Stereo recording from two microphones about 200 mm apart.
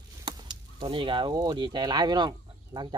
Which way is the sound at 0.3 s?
20° right (ahead or behind).